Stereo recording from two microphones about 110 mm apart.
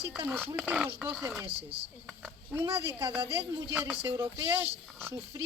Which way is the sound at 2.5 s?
25° right (ahead or behind).